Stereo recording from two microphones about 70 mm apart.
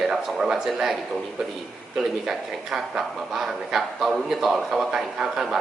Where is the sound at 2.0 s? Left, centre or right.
Centre.